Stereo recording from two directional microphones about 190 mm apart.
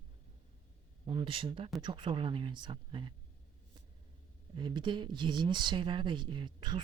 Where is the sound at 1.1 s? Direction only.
25° right (ahead or behind).